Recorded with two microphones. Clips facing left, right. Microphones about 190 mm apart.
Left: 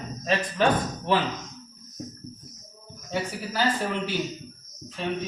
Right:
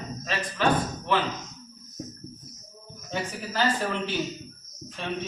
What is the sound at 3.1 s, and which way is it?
Speech, 10° left (ahead or behind).